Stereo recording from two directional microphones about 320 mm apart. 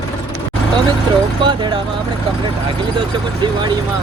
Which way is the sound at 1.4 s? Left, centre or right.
Centre.